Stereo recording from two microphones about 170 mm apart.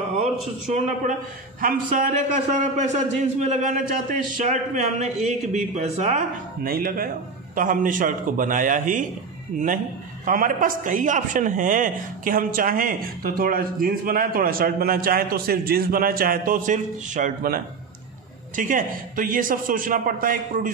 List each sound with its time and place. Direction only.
0.2 s a man's voice: 40° right (ahead or behind)
10.2 s speech: 50° right (ahead or behind)
18.6 s a man's voice: 50° right (ahead or behind)